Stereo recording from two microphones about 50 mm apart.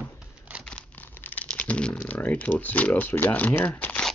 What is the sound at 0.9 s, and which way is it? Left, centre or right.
Crumpling, left.